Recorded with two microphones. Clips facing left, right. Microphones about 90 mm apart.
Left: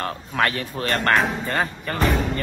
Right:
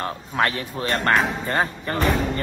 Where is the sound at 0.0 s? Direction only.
20° right (ahead or behind).